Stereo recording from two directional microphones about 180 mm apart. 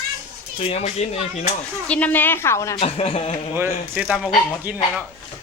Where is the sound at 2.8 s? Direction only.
35° left (ahead or behind).